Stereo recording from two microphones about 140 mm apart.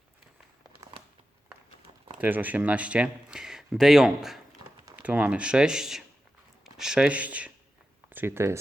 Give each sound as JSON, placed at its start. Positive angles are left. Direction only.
{"t": 2.2, "sound": "speech", "side_deg": -10}